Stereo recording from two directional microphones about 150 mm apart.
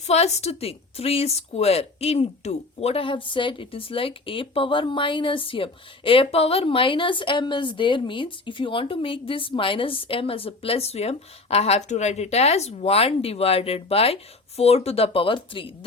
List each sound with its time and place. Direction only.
0.1 s a woman's voice: 45° left (ahead or behind)